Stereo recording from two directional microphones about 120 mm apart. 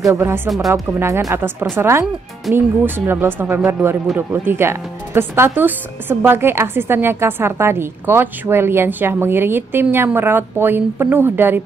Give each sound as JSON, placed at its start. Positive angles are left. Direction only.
{"t": 0.0, "sound": "speech", "side_deg": -25}